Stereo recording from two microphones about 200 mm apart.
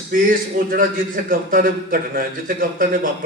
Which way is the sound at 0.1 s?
45° right (ahead or behind).